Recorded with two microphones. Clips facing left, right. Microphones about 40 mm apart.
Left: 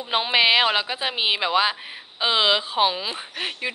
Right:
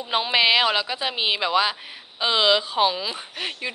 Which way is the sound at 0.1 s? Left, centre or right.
Centre.